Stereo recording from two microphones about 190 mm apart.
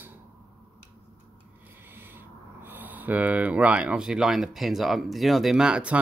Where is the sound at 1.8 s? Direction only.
10° right (ahead or behind).